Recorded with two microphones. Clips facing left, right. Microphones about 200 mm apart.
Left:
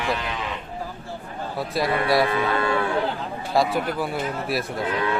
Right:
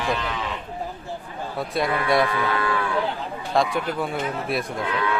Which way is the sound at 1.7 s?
Centre (ahead or behind).